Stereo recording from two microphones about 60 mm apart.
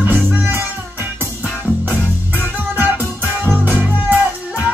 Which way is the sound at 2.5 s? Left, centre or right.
Right.